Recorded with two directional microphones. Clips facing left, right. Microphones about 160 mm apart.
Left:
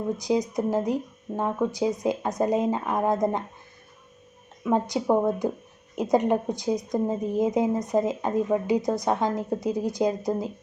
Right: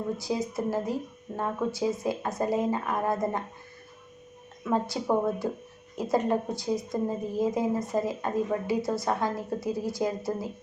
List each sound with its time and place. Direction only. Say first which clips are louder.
0.2 s a woman's voice: left 5 dB; 20° left (ahead or behind)
4.6 s a woman's voice: left 4 dB; 20° left (ahead or behind)